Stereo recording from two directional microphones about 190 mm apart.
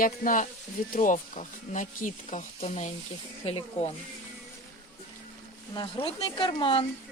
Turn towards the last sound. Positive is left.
turn(degrees=25)  # may be behind; listen again after turning